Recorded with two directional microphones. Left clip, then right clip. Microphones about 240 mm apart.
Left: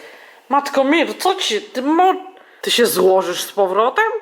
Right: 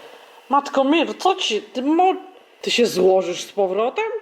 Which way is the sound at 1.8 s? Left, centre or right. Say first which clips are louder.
Left 3 dB; left.